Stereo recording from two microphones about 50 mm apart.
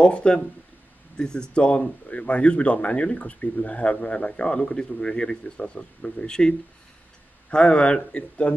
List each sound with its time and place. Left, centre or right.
0.0 s speech: left
7.5 s speech: left